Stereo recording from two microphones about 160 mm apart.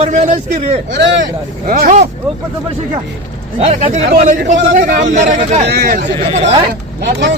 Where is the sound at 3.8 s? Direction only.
45° right (ahead or behind).